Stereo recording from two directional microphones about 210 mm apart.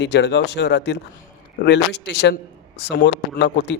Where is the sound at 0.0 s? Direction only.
55° left (ahead or behind).